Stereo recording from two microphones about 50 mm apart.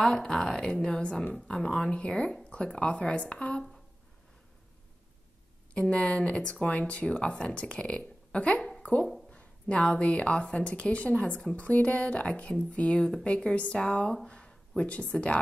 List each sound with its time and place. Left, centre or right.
0.0 s a woman's voice: centre
5.8 s speech: left
14.2 s a sound: centre
14.8 s speech: left